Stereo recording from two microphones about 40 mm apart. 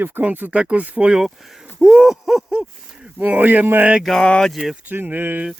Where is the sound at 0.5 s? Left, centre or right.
Right.